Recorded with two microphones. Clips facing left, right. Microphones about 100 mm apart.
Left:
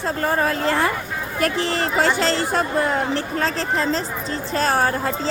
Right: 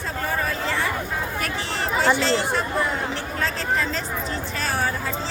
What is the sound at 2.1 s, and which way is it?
Speech, 40° left (ahead or behind).